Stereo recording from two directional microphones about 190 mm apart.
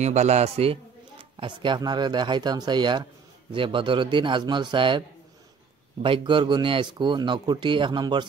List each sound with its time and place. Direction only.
0.0 s a man's voice: 35° right (ahead or behind)
6.0 s a man's voice: 25° right (ahead or behind)